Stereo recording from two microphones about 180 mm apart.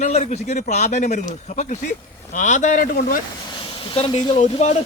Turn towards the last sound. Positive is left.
turn(degrees=35)  # may be behind; listen again after turning